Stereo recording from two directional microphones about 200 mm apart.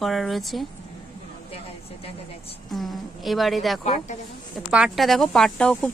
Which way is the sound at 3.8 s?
35° left (ahead or behind).